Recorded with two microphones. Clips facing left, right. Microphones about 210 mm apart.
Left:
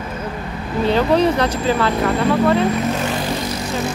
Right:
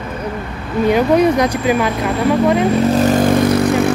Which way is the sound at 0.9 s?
15° right (ahead or behind).